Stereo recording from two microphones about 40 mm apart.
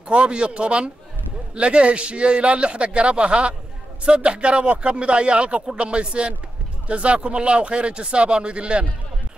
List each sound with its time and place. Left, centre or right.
0.1 s speech: right